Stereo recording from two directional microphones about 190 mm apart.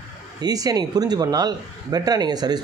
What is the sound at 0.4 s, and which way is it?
Speech, 20° right (ahead or behind).